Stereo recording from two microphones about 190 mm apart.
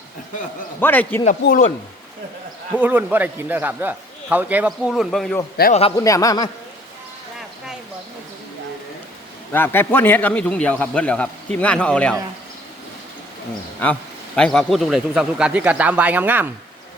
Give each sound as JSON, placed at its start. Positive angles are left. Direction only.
{"t": 0.8, "sound": "a man's voice", "side_deg": 10}
{"t": 1.2, "sound": "speech", "side_deg": 40}
{"t": 2.7, "sound": "a man's voice", "side_deg": -10}
{"t": 5.6, "sound": "speech", "side_deg": 55}
{"t": 6.0, "sound": "a man's voice", "side_deg": 20}
{"t": 9.5, "sound": "a man's voice", "side_deg": 10}
{"t": 13.8, "sound": "a man's voice", "side_deg": 10}